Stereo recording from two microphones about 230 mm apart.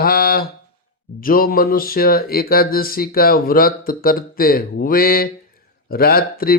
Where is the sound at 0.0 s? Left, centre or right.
Left.